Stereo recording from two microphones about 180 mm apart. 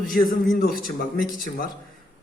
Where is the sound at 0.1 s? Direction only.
50° left (ahead or behind).